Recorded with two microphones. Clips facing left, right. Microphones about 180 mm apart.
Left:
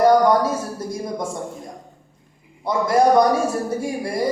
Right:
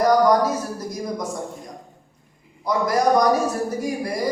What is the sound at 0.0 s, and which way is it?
Speech, 25° left (ahead or behind).